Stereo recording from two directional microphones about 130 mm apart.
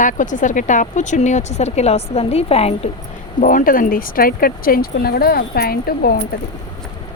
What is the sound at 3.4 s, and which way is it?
Speech, 90° left.